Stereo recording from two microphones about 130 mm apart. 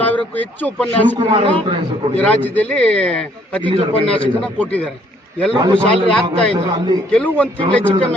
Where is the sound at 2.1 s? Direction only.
10° left (ahead or behind).